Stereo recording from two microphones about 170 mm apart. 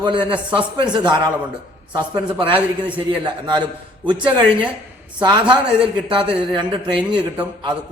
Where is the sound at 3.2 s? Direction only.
25° right (ahead or behind).